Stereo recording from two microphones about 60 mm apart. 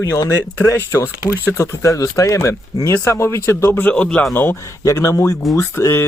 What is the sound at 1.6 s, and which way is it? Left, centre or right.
Speech, left.